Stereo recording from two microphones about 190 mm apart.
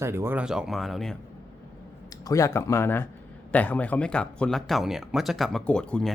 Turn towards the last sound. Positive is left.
turn(degrees=5)  # may be behind; listen again after turning